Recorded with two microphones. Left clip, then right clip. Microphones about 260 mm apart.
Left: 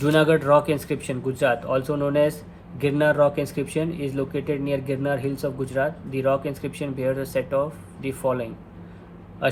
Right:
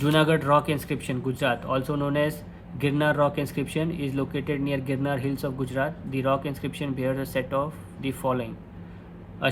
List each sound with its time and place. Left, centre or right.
0.0 s speech: centre